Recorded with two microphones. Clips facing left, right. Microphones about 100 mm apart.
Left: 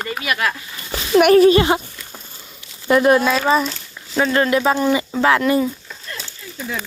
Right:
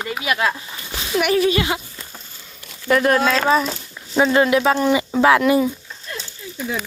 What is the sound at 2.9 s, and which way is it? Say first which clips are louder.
Speech: left 2 dB; 20° left (ahead or behind).